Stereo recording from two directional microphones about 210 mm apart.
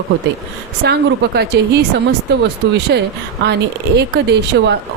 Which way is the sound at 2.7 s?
50° right (ahead or behind).